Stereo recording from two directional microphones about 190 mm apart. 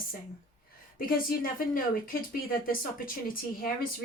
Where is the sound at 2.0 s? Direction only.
50° left (ahead or behind).